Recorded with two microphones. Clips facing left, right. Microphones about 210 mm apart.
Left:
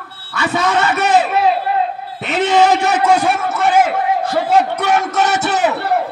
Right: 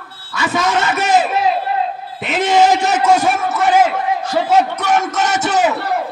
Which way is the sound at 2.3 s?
60° left (ahead or behind).